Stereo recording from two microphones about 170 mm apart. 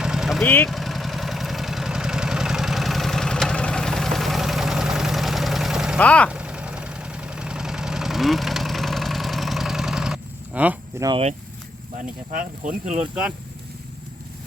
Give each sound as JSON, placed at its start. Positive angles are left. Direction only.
{"t": 0.0, "sound": "vehicle", "side_deg": -5}
{"t": 0.4, "sound": "speech", "side_deg": 10}
{"t": 0.7, "sound": "vehicle", "side_deg": 0}
{"t": 6.0, "sound": "speech", "side_deg": 10}
{"t": 6.3, "sound": "vehicle", "side_deg": -5}
{"t": 11.0, "sound": "speech", "side_deg": -15}
{"t": 11.9, "sound": "speech", "side_deg": -50}